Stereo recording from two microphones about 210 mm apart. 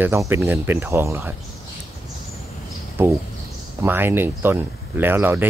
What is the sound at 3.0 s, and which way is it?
Speech, 10° right (ahead or behind).